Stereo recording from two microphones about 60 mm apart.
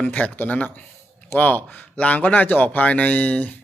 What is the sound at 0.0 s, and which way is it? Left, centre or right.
A man's voice, left.